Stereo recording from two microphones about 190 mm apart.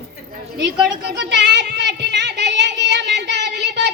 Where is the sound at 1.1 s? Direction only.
65° right (ahead or behind).